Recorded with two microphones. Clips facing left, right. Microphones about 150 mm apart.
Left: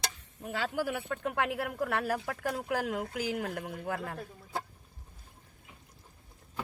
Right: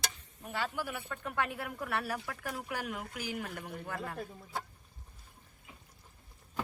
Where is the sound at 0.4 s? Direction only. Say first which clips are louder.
Left 4 dB; 90° left; by 4.2 s 65° left (ahead or behind).